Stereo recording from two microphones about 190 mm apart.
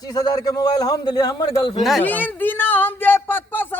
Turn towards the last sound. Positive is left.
turn(degrees=10)  # may be behind; listen again after turning